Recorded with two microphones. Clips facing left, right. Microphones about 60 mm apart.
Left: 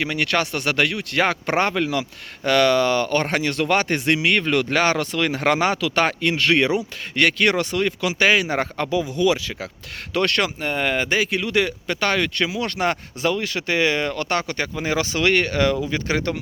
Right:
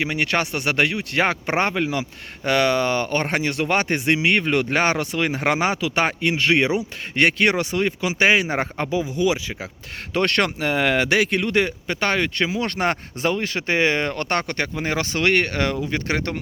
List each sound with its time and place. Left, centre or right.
0.0 s speech: right
10.2 s speech: right
10.6 s speech: right
11.5 s speech: right